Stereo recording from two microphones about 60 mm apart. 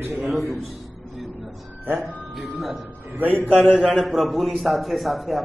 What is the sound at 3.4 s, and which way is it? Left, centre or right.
Speech, left.